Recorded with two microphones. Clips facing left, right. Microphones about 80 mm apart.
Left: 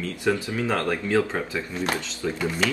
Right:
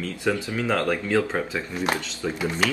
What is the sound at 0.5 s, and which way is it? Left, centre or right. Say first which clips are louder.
Speech: right 1 dB; centre.